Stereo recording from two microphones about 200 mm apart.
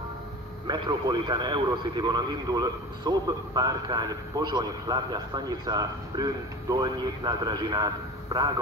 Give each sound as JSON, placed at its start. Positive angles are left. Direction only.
{"t": 0.7, "sound": "a man's voice", "side_deg": -20}